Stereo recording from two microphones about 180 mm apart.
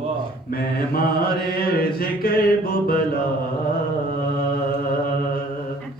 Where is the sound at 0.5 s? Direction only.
55° left (ahead or behind).